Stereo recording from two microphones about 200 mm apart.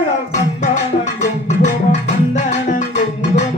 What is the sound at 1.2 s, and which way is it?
Music, 35° left (ahead or behind).